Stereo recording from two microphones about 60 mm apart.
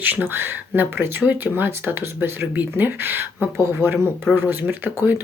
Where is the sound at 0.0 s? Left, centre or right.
Right.